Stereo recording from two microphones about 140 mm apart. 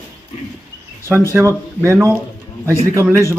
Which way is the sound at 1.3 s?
15° right (ahead or behind).